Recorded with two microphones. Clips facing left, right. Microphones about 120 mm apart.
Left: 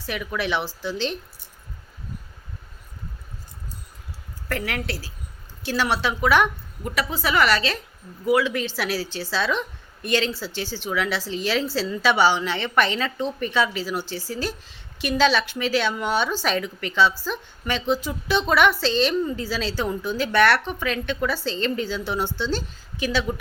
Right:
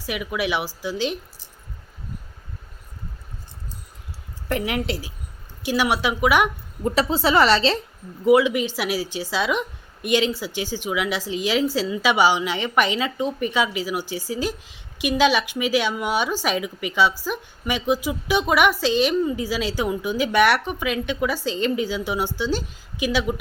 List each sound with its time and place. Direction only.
0.0 s a woman's voice: 10° right (ahead or behind)
4.4 s a woman's voice: 20° right (ahead or behind)
6.8 s a woman's voice: 30° right (ahead or behind); by 23.3 s 10° right (ahead or behind)